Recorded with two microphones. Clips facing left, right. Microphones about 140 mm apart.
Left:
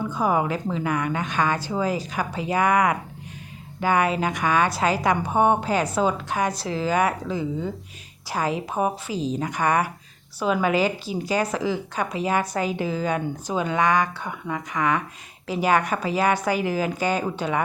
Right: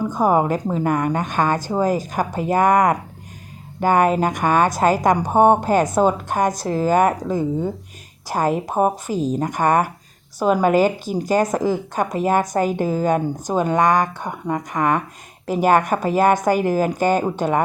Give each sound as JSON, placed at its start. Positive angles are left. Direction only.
{"t": 0.0, "sound": "a woman's voice", "side_deg": -45}